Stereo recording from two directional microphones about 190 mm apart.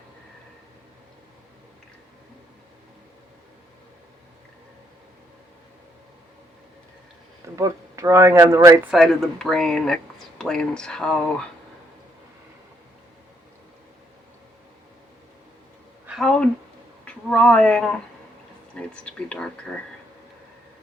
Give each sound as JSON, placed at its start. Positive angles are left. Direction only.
{"t": 7.5, "sound": "speech", "side_deg": -15}
{"t": 8.9, "sound": "speech", "side_deg": 0}
{"t": 16.0, "sound": "a sound", "side_deg": 0}
{"t": 18.8, "sound": "speech", "side_deg": 5}